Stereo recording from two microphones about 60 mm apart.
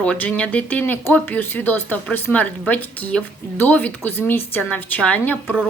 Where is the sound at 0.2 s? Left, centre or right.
Left.